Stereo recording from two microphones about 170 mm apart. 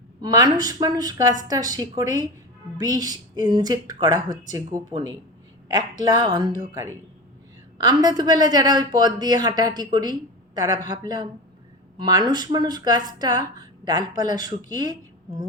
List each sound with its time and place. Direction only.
0.2 s a woman's voice: 25° right (ahead or behind)
7.8 s a woman's voice: 25° right (ahead or behind)